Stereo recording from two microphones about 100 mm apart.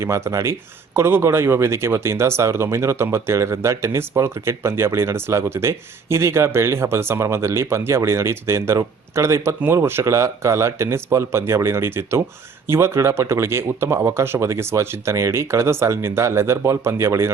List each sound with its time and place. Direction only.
0.0 s speech: 30° right (ahead or behind)